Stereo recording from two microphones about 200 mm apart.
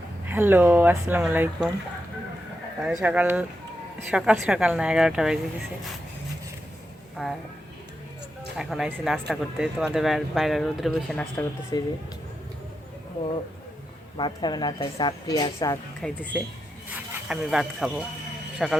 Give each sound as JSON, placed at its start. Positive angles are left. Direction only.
{"t": 0.3, "sound": "speech", "side_deg": -10}
{"t": 2.8, "sound": "speech", "side_deg": -5}
{"t": 7.2, "sound": "speech", "side_deg": 0}
{"t": 8.5, "sound": "speech", "side_deg": 0}
{"t": 11.7, "sound": "speech", "side_deg": 20}
{"t": 14.2, "sound": "speech", "side_deg": 20}
{"t": 16.0, "sound": "speech", "side_deg": 5}